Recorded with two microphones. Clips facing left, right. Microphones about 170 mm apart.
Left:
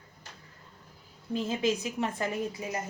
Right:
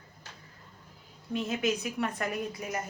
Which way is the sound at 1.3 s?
30° left (ahead or behind).